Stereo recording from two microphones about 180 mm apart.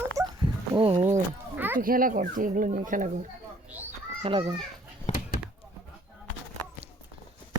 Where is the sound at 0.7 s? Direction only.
30° right (ahead or behind).